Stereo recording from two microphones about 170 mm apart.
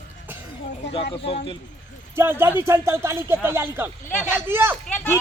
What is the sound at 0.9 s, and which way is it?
Speech, 35° left (ahead or behind).